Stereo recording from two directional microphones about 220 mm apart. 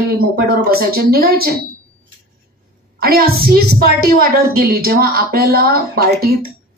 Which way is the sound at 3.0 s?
45° right (ahead or behind).